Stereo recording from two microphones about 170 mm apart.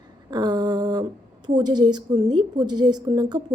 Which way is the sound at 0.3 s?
25° right (ahead or behind).